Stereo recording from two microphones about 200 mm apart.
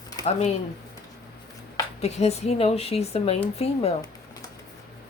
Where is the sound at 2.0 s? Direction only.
30° left (ahead or behind).